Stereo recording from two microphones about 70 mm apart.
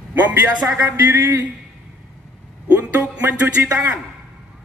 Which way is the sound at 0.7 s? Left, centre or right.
Right.